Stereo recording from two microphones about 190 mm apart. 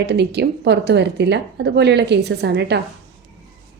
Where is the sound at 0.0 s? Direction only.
60° right (ahead or behind).